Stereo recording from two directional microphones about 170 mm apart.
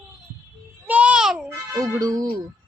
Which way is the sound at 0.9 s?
5° right (ahead or behind).